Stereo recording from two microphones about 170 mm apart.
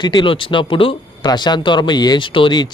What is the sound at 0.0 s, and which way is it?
Speech, 25° left (ahead or behind).